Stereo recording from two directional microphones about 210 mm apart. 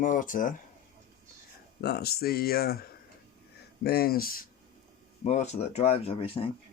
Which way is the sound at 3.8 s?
45° left (ahead or behind).